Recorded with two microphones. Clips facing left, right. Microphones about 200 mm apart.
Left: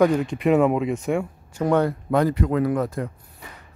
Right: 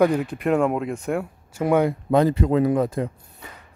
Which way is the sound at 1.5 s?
10° right (ahead or behind).